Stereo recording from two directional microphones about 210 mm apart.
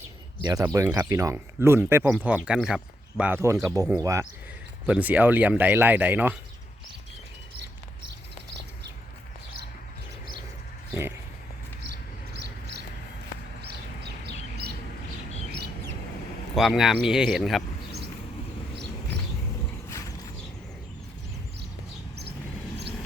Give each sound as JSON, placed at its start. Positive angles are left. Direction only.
{"t": 0.4, "sound": "speech", "side_deg": -15}
{"t": 11.8, "sound": "a sound", "side_deg": -55}
{"t": 13.6, "sound": "bird", "side_deg": -50}
{"t": 16.6, "sound": "speech", "side_deg": 0}
{"t": 19.9, "sound": "mechanisms", "side_deg": 15}